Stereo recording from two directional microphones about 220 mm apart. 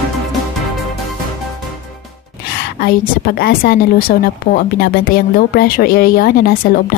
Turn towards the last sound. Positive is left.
turn(degrees=45)  # may be behind; listen again after turning